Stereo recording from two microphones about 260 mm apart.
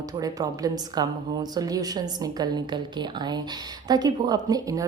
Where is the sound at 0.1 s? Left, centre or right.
Centre.